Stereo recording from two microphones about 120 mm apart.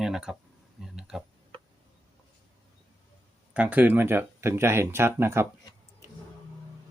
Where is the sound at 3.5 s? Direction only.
10° right (ahead or behind).